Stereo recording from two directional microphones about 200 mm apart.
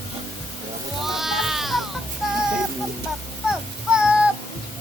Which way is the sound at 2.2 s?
Centre (ahead or behind).